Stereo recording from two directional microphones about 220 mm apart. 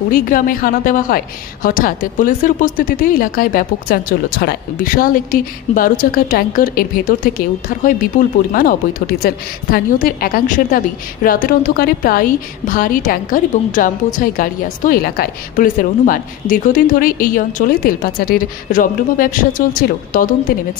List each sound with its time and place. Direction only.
0.1 s a woman's voice: 40° left (ahead or behind)